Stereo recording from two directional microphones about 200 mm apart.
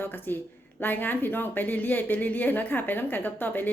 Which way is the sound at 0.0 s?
10° left (ahead or behind).